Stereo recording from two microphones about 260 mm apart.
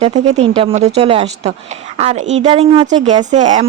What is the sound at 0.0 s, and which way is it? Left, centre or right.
Speech, right.